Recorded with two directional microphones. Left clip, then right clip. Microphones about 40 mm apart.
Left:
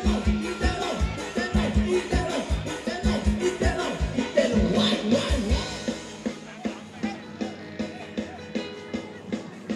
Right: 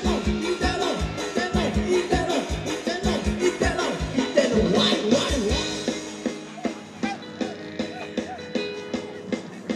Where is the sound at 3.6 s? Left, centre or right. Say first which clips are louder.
Right 3 dB; right.